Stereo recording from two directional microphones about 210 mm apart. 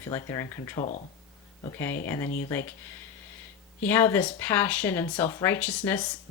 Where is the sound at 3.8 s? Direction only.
10° left (ahead or behind).